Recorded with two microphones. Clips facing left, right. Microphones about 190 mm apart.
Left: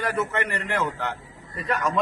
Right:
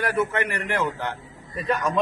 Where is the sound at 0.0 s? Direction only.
10° right (ahead or behind).